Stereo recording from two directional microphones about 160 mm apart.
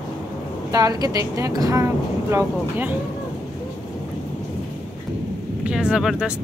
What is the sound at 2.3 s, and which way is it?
Speech, 10° right (ahead or behind).